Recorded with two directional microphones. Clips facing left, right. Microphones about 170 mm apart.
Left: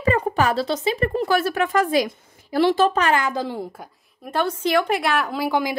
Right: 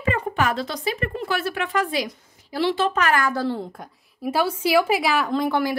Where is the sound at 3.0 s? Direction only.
25° left (ahead or behind).